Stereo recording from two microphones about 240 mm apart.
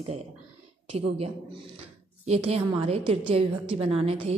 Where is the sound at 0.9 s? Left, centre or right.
Right.